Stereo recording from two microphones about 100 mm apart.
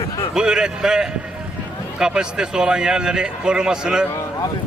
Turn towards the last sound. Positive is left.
turn(degrees=-5)  # may be behind; listen again after turning